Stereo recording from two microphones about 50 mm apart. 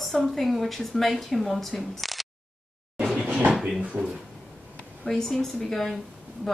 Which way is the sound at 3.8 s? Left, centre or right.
Right.